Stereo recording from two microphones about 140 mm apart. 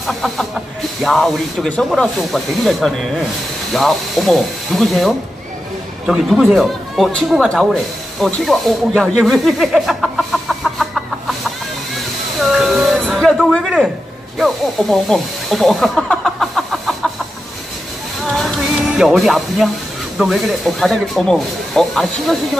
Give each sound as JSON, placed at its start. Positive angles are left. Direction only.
{"t": 0.0, "sound": "speech", "side_deg": 0}
{"t": 12.4, "sound": "a sound", "side_deg": 0}
{"t": 14.4, "sound": "snake", "side_deg": 0}
{"t": 18.2, "sound": "music", "side_deg": 0}
{"t": 20.2, "sound": "speech", "side_deg": 0}